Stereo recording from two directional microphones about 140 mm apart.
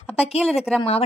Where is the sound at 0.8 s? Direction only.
45° left (ahead or behind).